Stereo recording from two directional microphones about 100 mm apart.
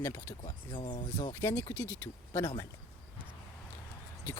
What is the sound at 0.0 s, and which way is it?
Speech, 30° left (ahead or behind).